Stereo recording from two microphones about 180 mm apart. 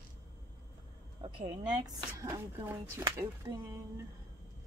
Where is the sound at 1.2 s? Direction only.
25° right (ahead or behind).